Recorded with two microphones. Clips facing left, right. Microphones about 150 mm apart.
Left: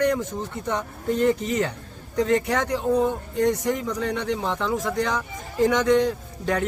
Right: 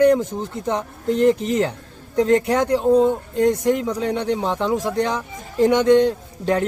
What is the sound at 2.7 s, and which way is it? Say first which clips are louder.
A man's voice: right 7 dB; 25° right (ahead or behind).